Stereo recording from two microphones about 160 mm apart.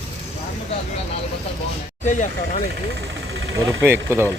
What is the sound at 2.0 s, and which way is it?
Speech, 50° left (ahead or behind).